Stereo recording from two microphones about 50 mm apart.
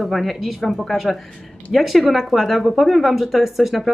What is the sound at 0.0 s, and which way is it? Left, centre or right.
Speech, centre.